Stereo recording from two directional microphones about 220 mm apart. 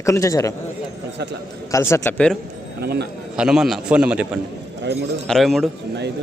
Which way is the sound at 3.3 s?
5° right (ahead or behind).